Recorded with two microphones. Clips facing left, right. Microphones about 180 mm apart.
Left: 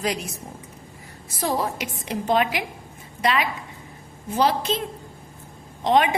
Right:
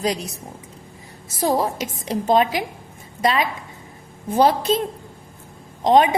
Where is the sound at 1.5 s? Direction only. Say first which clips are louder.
Right 4 dB; 35° right (ahead or behind).